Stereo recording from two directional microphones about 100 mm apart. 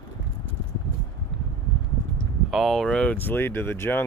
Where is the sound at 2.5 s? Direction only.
Centre (ahead or behind); by 4.0 s 20° left (ahead or behind).